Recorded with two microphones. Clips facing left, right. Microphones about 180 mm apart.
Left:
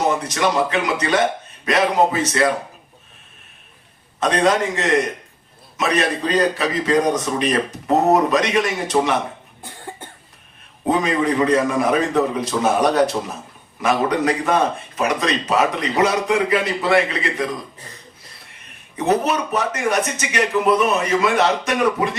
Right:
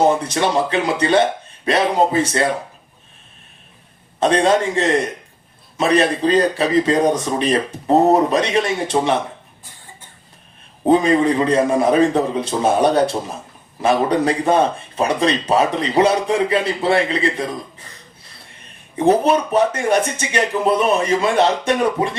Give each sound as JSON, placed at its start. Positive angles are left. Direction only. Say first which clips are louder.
{"t": 0.1, "sound": "a man's voice", "louder": "right 2 dB", "side_deg": -30}
{"t": 4.2, "sound": "a man's voice", "louder": "right 2 dB", "side_deg": -30}
{"t": 9.6, "sound": "cough", "louder": "left 10 dB", "side_deg": 60}
{"t": 10.8, "sound": "a man's voice", "louder": "right 5 dB", "side_deg": -30}
{"t": 18.9, "sound": "speech", "louder": "right 4 dB", "side_deg": -30}